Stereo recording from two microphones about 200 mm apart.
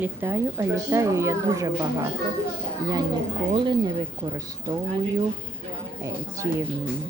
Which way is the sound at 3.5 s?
25° right (ahead or behind).